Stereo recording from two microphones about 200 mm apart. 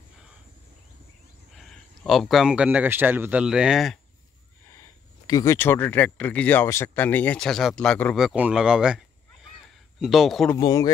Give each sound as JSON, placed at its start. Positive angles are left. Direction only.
{"t": 1.6, "sound": "speech", "side_deg": 0}
{"t": 5.2, "sound": "speech", "side_deg": 15}
{"t": 10.5, "sound": "speech", "side_deg": 20}